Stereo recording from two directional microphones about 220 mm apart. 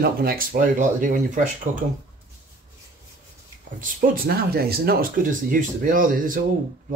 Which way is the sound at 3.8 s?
40° right (ahead or behind).